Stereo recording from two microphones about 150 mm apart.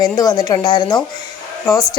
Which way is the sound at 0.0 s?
25° left (ahead or behind).